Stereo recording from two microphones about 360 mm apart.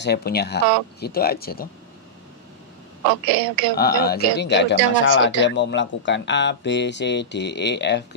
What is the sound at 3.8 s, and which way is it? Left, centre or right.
A man's voice, left.